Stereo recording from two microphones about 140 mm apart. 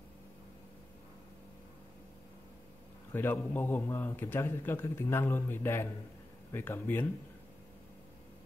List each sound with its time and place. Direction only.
3.1 s a man's voice: 15° left (ahead or behind)